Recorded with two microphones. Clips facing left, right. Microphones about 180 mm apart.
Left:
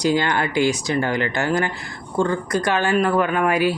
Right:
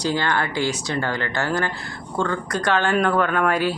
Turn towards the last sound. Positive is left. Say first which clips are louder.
# left 2 dB
turn(degrees=10)  # may be behind; listen again after turning